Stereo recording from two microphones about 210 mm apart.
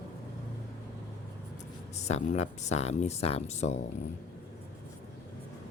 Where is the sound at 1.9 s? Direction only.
30° left (ahead or behind).